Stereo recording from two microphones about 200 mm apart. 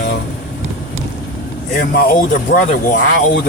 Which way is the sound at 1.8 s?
50° left (ahead or behind).